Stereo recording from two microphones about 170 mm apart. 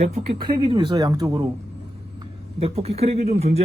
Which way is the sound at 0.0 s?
45° right (ahead or behind).